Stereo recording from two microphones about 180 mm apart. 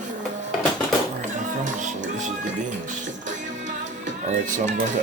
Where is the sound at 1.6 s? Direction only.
45° right (ahead or behind).